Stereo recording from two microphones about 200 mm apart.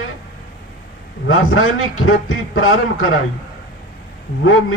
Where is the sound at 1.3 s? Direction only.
90° left.